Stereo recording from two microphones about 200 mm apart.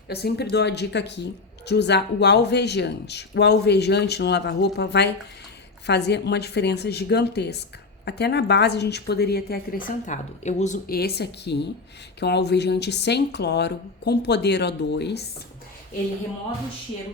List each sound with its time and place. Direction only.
0.1 s speech: 55° left (ahead or behind)